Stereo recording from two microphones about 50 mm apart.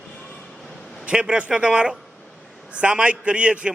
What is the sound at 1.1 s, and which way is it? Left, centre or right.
A man's voice, centre.